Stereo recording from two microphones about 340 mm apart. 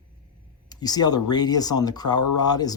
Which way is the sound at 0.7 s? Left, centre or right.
Centre.